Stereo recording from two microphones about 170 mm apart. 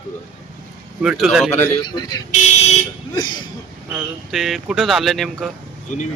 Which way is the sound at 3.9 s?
Centre (ahead or behind).